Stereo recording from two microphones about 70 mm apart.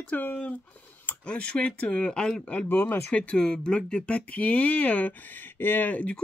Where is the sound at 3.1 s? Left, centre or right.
Centre.